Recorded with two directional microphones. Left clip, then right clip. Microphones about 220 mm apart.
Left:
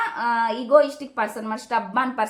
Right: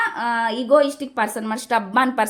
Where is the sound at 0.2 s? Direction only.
40° right (ahead or behind).